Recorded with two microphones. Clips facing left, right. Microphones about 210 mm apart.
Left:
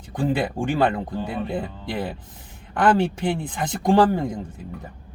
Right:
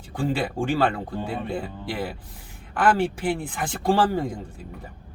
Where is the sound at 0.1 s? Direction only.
20° left (ahead or behind).